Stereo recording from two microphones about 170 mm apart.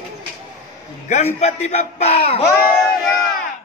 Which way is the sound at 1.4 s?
40° left (ahead or behind).